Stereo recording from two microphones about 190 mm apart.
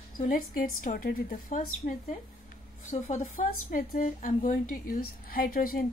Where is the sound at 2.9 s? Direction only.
45° left (ahead or behind).